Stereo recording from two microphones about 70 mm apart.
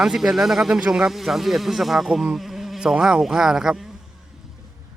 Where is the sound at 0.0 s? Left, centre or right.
Centre.